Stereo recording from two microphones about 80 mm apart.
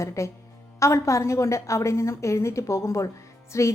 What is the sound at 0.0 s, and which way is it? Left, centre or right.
A woman's voice, left.